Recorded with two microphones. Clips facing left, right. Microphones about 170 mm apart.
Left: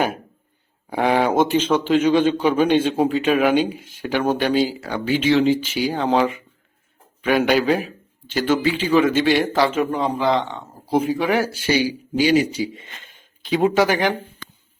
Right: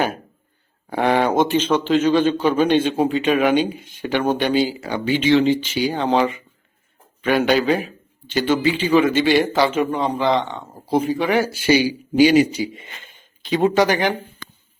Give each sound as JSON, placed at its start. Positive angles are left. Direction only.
{"t": 0.9, "sound": "a man's voice", "side_deg": 10}
{"t": 12.2, "sound": "a man's voice", "side_deg": -15}
{"t": 13.4, "sound": "a man's voice", "side_deg": 5}